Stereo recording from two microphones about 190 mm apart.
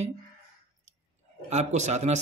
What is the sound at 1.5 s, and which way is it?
Speech, 35° right (ahead or behind).